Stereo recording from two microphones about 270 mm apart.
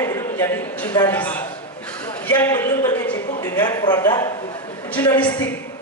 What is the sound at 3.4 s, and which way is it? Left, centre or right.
A man's voice, centre.